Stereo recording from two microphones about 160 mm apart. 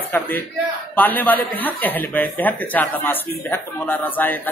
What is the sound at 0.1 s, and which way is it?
A man's voice, 15° left (ahead or behind).